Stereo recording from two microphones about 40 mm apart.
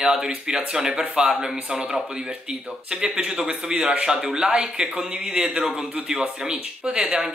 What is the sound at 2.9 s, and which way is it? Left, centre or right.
Speech, centre.